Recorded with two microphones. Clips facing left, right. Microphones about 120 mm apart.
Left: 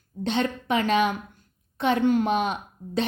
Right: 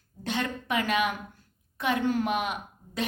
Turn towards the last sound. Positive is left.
turn(degrees=30)  # may be behind; listen again after turning